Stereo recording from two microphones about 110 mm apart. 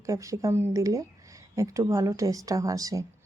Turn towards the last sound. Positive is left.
turn(degrees=-30)  # may be behind; listen again after turning